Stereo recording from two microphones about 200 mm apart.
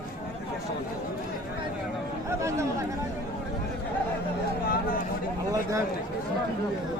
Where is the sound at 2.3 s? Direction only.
15° right (ahead or behind).